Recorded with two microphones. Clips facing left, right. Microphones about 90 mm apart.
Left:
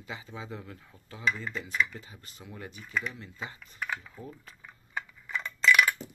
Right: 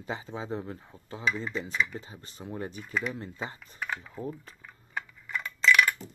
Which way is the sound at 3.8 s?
5° right (ahead or behind).